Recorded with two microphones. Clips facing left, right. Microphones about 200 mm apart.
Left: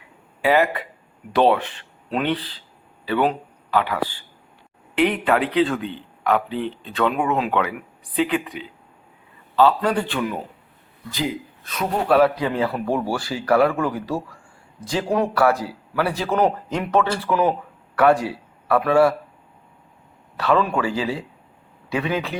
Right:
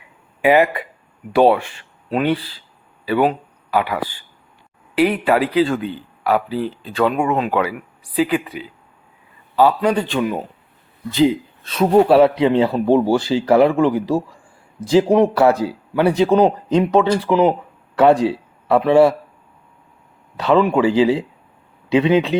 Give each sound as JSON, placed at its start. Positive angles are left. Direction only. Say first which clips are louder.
{"t": 0.4, "sound": "speech", "louder": "right 4 dB", "side_deg": -15}
{"t": 20.3, "sound": "speech", "louder": "right 5 dB", "side_deg": -20}